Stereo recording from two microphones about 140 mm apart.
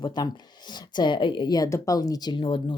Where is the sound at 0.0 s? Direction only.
30° left (ahead or behind).